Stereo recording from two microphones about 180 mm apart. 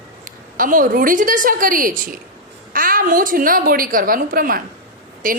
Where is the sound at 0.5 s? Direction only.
50° right (ahead or behind).